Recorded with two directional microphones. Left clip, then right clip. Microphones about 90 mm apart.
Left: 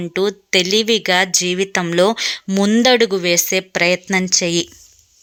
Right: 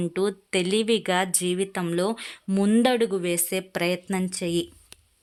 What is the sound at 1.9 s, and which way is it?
Speech, 30° left (ahead or behind).